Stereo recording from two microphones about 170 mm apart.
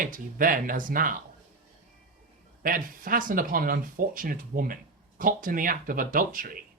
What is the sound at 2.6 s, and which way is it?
Speech, 55° right (ahead or behind).